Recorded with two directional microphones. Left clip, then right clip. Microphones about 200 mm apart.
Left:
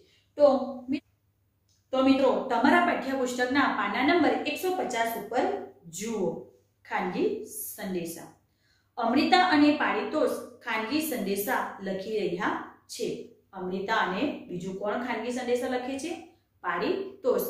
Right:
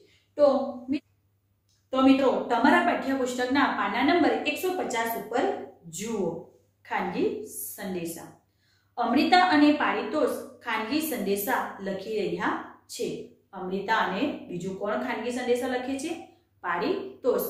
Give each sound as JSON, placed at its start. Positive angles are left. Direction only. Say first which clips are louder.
{"t": 0.3, "sound": "speech", "louder": "even", "side_deg": 20}
{"t": 1.9, "sound": "a woman's voice", "louder": "right 1 dB", "side_deg": 0}
{"t": 6.8, "sound": "a woman's voice", "louder": "right 1 dB", "side_deg": 0}